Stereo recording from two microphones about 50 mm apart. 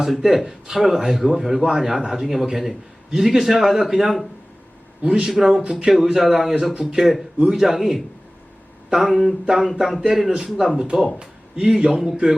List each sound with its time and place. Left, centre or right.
0.0 s a man's voice: centre
5.0 s a man's voice: centre
5.3 s a man's voice: centre
10.8 s a man's voice: centre